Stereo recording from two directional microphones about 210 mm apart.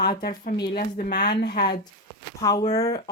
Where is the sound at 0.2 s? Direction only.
45° left (ahead or behind).